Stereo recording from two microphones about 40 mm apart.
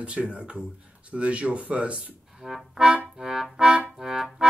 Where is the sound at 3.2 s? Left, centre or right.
Centre.